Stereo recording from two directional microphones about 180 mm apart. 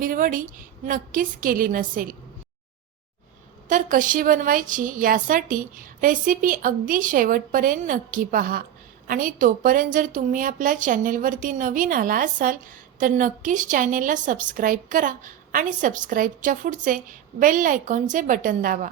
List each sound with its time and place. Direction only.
0.0 s a woman's voice: 50° right (ahead or behind)
3.7 s a woman's voice: 45° right (ahead or behind)